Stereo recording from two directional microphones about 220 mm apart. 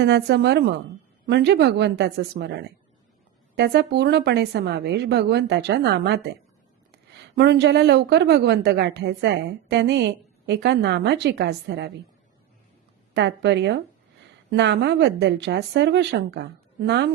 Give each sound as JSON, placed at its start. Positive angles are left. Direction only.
{"t": 0.0, "sound": "a woman's voice", "side_deg": -50}
{"t": 7.3, "sound": "a woman's voice", "side_deg": -50}
{"t": 13.1, "sound": "a woman's voice", "side_deg": -50}